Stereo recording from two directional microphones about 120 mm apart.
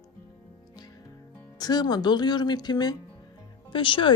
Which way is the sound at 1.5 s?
35° left (ahead or behind).